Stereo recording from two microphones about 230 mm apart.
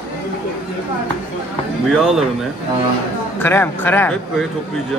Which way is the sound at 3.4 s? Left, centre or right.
Centre.